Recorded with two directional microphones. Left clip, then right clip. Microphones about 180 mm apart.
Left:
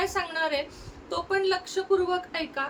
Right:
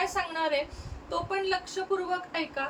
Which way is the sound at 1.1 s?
25° left (ahead or behind).